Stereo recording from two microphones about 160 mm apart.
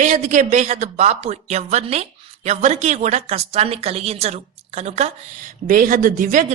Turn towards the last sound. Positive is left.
turn(degrees=-60)  # may be behind; listen again after turning